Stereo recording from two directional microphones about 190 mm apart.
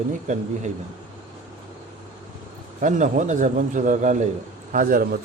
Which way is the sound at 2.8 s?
40° right (ahead or behind).